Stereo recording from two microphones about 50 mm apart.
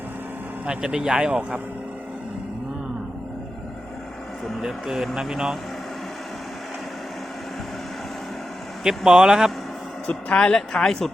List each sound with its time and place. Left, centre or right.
0.6 s speech: right
4.6 s speech: centre
8.8 s speech: centre
10.3 s speech: centre